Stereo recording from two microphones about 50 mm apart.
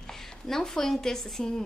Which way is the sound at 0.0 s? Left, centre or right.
Centre.